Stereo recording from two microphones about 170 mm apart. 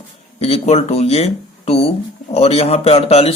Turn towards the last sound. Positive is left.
turn(degrees=35)  # may be behind; listen again after turning